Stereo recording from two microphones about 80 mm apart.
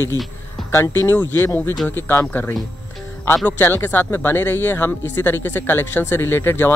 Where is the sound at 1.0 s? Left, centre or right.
Left.